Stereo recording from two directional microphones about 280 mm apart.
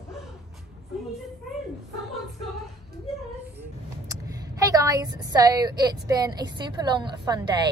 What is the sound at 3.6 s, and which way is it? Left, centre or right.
A woman's voice, centre.